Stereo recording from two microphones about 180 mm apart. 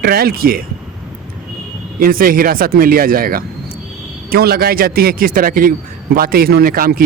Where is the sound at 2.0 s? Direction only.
55° right (ahead or behind).